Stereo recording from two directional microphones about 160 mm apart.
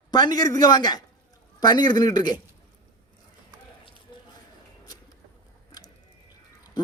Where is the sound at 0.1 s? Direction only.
25° left (ahead or behind).